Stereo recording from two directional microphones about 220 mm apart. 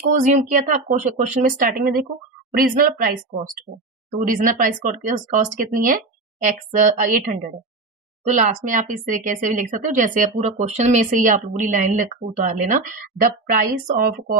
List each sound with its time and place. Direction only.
0.1 s speech: 35° right (ahead or behind)
4.2 s speech: 40° right (ahead or behind)